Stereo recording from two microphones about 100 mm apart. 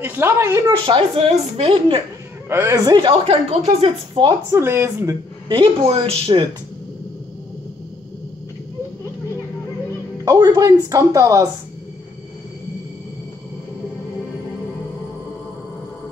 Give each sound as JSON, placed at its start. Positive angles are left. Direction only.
{"t": 0.0, "sound": "a woman's voice", "side_deg": -20}
{"t": 0.8, "sound": "a woman's voice", "side_deg": -70}
{"t": 2.5, "sound": "a man's voice", "side_deg": -30}
{"t": 3.3, "sound": "speech", "side_deg": -80}
{"t": 4.1, "sound": "a woman's voice", "side_deg": -50}
{"t": 4.5, "sound": "a woman's voice", "side_deg": -25}
{"t": 5.5, "sound": "a woman's voice", "side_deg": -55}
{"t": 5.9, "sound": "a woman's voice", "side_deg": -75}
{"t": 10.2, "sound": "speech", "side_deg": -40}